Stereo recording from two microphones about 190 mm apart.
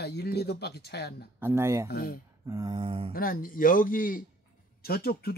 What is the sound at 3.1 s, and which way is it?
Speech, 50° left (ahead or behind).